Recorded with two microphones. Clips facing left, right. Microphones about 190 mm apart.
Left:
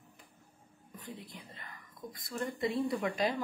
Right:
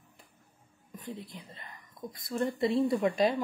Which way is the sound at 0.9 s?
25° right (ahead or behind).